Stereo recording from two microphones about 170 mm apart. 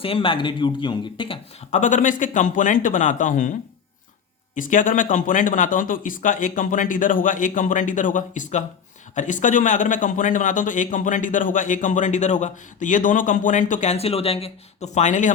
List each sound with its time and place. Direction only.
0.0 s speech: 30° left (ahead or behind)
1.7 s a man's voice: 45° left (ahead or behind)
4.5 s a man's voice: 50° left (ahead or behind)